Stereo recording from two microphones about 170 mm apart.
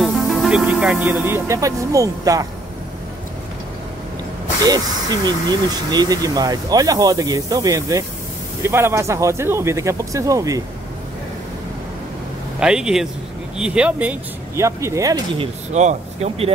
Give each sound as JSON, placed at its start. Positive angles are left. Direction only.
{"t": 0.0, "sound": "speech", "side_deg": 0}
{"t": 4.6, "sound": "speech", "side_deg": -25}
{"t": 12.5, "sound": "speech", "side_deg": -5}
{"t": 15.3, "sound": "speech", "side_deg": -45}